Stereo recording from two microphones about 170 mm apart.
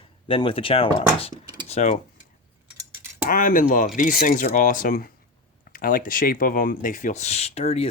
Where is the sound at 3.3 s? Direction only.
50° left (ahead or behind).